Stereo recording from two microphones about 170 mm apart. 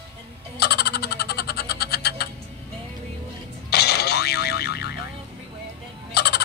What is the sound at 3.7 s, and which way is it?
Boing, 70° left (ahead or behind).